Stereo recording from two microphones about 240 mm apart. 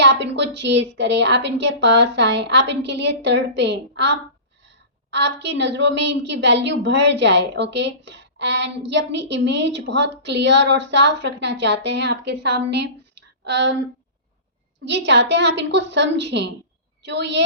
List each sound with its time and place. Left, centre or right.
0.0 s a woman's voice: right
13.1 s a sound: right
14.8 s a woman's voice: right